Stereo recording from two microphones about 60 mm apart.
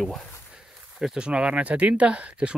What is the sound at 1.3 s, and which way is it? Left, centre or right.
Speech, centre.